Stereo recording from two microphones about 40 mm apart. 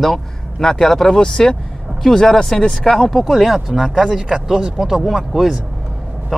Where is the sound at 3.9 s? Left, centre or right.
Centre.